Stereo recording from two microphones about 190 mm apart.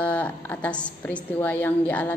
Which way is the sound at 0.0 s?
10° left (ahead or behind).